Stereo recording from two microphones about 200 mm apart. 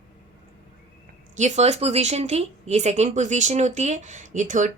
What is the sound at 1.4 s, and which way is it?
Speech, 35° right (ahead or behind).